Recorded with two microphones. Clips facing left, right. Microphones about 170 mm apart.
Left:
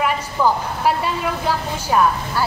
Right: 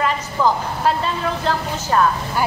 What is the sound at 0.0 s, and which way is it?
A woman's voice, 10° left (ahead or behind).